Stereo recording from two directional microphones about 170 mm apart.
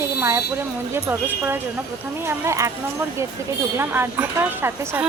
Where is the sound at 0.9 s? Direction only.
15° right (ahead or behind).